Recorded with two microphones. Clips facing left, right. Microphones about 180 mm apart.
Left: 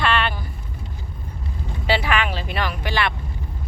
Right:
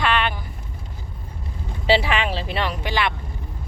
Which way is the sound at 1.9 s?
30° right (ahead or behind).